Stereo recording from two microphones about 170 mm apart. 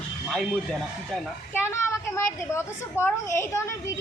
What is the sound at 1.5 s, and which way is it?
A child's voice, 15° left (ahead or behind).